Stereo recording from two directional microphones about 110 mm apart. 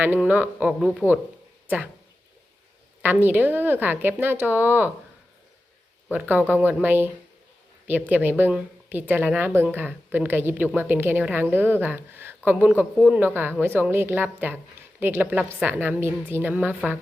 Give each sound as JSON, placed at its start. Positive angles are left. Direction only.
{"t": 0.0, "sound": "a woman's voice", "side_deg": -15}
{"t": 0.7, "sound": "speech", "side_deg": 0}
{"t": 3.0, "sound": "a woman's voice", "side_deg": -15}
{"t": 6.1, "sound": "a woman's voice", "side_deg": -15}